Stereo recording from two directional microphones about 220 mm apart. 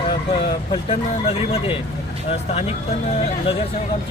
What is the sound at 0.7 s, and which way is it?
Speech, 25° left (ahead or behind).